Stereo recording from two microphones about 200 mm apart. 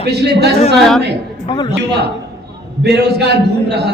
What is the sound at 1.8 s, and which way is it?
A man's voice, 55° right (ahead or behind).